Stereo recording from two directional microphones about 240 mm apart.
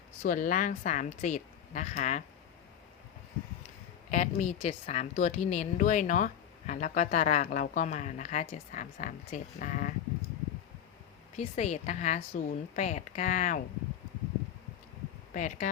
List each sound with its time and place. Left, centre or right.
0.2 s a woman's voice: left
4.1 s a woman's voice: left
11.3 s a woman's voice: left
15.3 s speech: left